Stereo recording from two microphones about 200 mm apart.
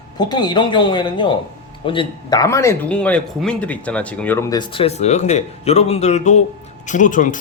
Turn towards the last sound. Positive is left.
turn(degrees=40)  # may be behind; listen again after turning